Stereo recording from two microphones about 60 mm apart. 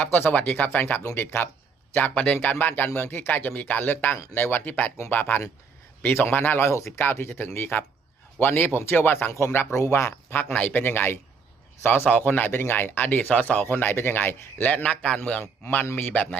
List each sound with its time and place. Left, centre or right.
0.1 s speech: left
0.3 s speech: left
1.0 s speech: left
1.9 s a man's voice: left
2.1 s speech: left
6.7 s speech: left
7.0 s speech: left